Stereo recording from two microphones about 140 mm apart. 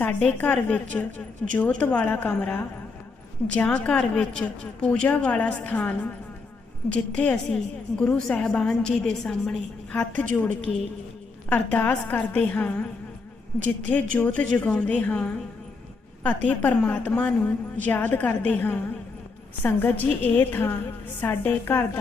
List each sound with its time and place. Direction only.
0.0 s a woman's voice: 10° left (ahead or behind)
14.2 s a woman's voice: 10° left (ahead or behind)